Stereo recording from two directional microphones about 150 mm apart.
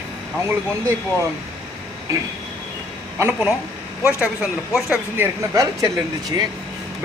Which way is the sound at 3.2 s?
15° right (ahead or behind).